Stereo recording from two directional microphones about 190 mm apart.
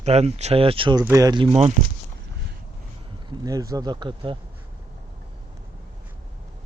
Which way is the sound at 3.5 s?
15° right (ahead or behind).